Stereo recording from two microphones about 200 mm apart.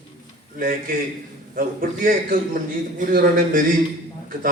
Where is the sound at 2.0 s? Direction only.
45° right (ahead or behind).